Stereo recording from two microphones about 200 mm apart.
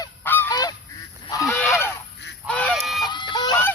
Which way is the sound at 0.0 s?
10° left (ahead or behind).